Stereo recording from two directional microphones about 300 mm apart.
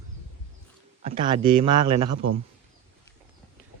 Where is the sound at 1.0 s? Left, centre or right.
Centre.